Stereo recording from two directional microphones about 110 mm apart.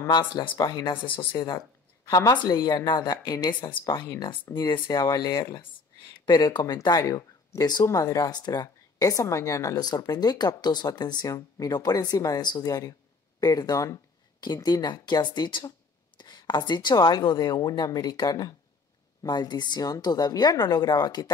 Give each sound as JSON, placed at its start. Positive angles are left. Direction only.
{"t": 0.4, "sound": "a woman's voice", "side_deg": 40}